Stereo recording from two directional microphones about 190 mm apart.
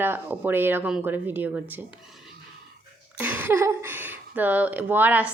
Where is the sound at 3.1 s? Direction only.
10° right (ahead or behind).